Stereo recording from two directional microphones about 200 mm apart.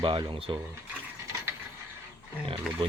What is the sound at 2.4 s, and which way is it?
Speech, 25° right (ahead or behind).